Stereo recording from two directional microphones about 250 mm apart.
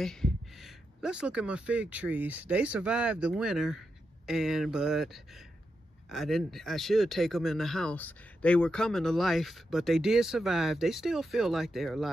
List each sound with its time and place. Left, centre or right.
0.0 s speech: centre